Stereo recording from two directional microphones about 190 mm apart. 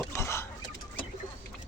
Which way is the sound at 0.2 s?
15° left (ahead or behind).